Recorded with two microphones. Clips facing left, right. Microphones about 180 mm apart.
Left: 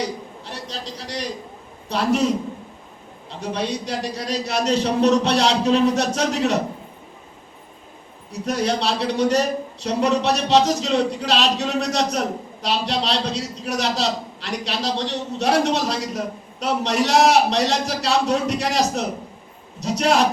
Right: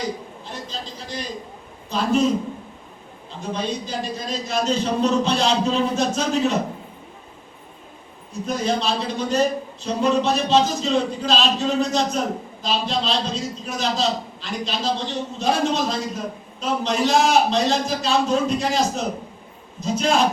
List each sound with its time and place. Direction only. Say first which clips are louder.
0.4 s a sound: left 1 dB; 75° left (ahead or behind)
1.9 s a man's voice: even; 70° left (ahead or behind)
8.3 s a man's voice: left 1 dB; 70° left (ahead or behind)